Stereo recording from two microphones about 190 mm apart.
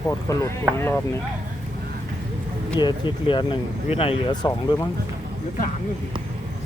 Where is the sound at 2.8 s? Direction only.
25° left (ahead or behind).